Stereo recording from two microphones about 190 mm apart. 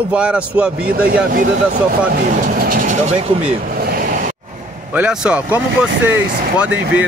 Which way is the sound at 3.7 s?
50° right (ahead or behind).